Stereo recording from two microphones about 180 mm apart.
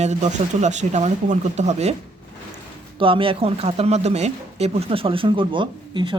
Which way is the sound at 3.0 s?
30° right (ahead or behind).